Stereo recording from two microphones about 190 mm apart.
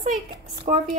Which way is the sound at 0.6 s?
40° right (ahead or behind).